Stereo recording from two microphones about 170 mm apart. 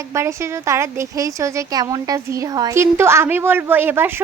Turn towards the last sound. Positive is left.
turn(degrees=-10)  # may be behind; listen again after turning